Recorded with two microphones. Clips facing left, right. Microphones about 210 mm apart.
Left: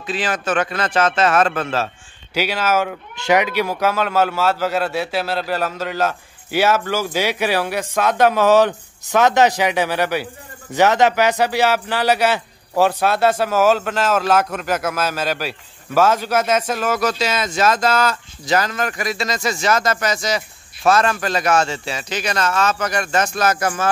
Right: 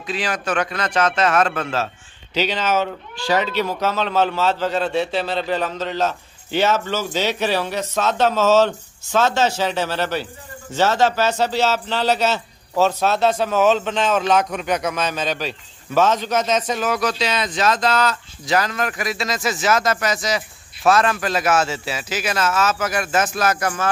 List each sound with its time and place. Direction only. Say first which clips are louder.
0.0 s speech: left 2 dB; centre (ahead or behind)
0.9 s speech: left 1 dB; 30° left (ahead or behind)
2.3 s a man's voice: left 1 dB; 10° left (ahead or behind)